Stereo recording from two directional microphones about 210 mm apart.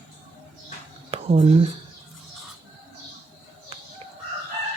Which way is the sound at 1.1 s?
30° right (ahead or behind).